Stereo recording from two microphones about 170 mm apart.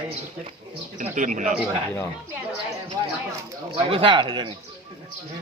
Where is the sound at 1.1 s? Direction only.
50° right (ahead or behind).